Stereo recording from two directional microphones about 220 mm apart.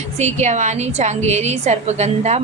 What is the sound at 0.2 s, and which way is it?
A woman's voice, 30° right (ahead or behind).